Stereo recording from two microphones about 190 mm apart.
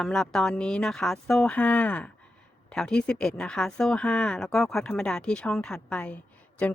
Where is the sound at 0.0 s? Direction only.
Centre (ahead or behind).